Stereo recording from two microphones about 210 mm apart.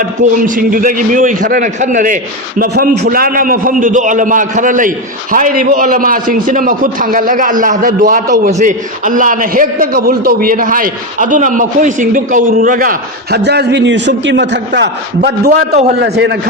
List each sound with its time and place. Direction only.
0.0 s a man's voice: 40° right (ahead or behind)
2.6 s a man's voice: 50° right (ahead or behind)